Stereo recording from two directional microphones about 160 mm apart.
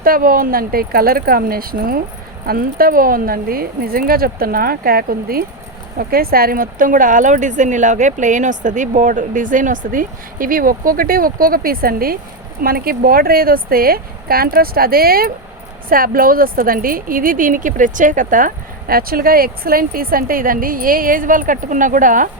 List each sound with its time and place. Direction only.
0.0 s speech: 65° right (ahead or behind)